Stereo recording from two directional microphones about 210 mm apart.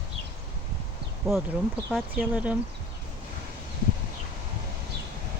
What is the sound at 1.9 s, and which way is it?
Speech, 5° right (ahead or behind).